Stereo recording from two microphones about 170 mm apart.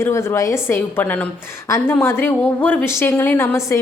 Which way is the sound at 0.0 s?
15° left (ahead or behind).